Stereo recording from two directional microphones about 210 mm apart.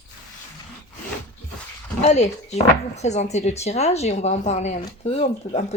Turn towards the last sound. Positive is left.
turn(degrees=30)  # may be behind; listen again after turning